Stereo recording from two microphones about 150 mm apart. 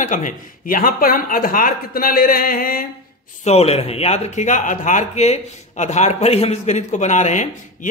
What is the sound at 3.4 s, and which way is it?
A man's voice, 45° left (ahead or behind).